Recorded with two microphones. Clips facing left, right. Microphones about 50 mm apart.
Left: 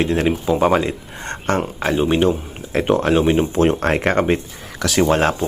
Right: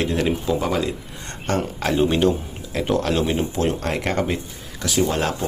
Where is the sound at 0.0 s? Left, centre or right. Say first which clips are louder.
Left 3 dB; left.